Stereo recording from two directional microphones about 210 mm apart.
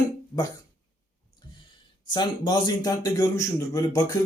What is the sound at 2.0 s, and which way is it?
A man's voice, 20° left (ahead or behind).